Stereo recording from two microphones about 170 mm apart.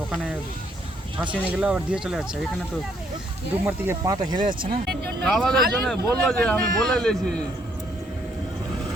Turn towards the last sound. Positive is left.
turn(degrees=5)  # may be behind; listen again after turning